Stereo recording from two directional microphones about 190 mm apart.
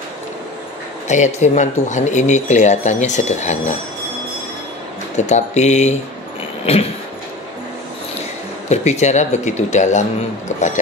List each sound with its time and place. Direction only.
1.0 s speech: 40° left (ahead or behind)
5.1 s speech: 40° left (ahead or behind)
6.6 s a sound: 30° left (ahead or behind)
8.6 s speech: 35° left (ahead or behind)